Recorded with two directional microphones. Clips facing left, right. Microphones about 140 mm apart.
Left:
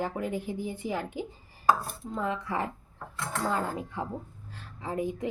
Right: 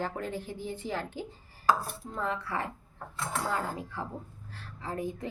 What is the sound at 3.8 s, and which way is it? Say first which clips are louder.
Speech: left 3 dB; 20° left (ahead or behind).